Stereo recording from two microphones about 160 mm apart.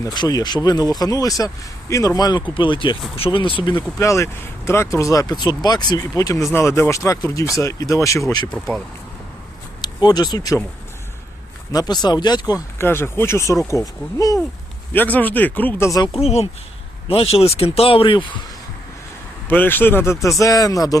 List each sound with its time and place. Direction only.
0.0 s speech: 25° left (ahead or behind)
3.9 s speech: 20° left (ahead or behind)
8.5 s speech: 5° left (ahead or behind)
9.8 s speech: 25° left (ahead or behind)
11.7 s speech: 25° left (ahead or behind)
12.8 s speech: 15° left (ahead or behind)
14.9 s speech: 10° left (ahead or behind)
16.1 s speech: 40° left (ahead or behind)
19.5 s speech: 10° left (ahead or behind)